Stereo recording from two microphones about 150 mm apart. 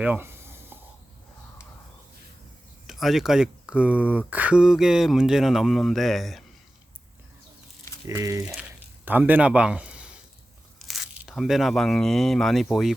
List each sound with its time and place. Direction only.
0.0 s a sound: 15° right (ahead or behind)
2.8 s speech: centre (ahead or behind)
8.0 s a man's voice: 20° right (ahead or behind); by 12.9 s centre (ahead or behind)